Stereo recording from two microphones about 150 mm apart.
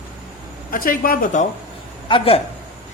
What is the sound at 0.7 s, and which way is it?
Speech, 70° left (ahead or behind).